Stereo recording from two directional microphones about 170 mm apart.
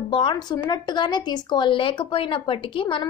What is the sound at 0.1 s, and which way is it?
A woman's voice, 25° left (ahead or behind).